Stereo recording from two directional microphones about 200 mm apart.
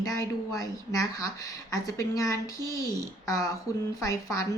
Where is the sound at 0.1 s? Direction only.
15° left (ahead or behind).